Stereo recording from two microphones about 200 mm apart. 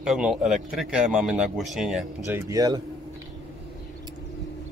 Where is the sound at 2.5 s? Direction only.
20° right (ahead or behind).